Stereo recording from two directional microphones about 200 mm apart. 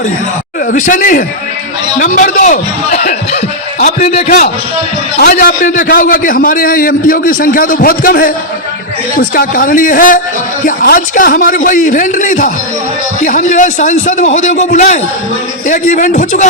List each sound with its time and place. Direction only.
0.7 s a man's voice: 40° left (ahead or behind)
5.1 s a man's voice: 50° left (ahead or behind)